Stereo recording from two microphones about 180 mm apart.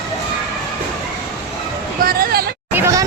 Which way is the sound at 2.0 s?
55° right (ahead or behind).